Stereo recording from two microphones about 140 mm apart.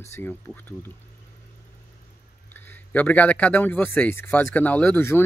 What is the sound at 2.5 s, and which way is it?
Speech, 15° left (ahead or behind).